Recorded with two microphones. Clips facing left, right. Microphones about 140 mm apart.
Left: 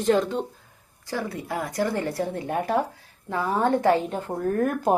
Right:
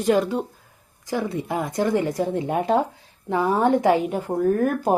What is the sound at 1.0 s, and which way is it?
A woman's voice, 20° right (ahead or behind).